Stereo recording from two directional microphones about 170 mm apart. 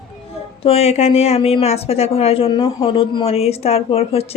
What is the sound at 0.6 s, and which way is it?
Speech, 35° left (ahead or behind).